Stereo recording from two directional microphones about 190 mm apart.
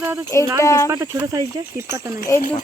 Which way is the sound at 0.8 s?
15° right (ahead or behind).